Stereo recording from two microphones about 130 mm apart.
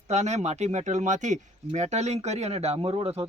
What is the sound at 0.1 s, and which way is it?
Speech, 60° right (ahead or behind).